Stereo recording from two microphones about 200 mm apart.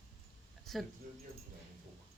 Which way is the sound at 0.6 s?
Centre (ahead or behind).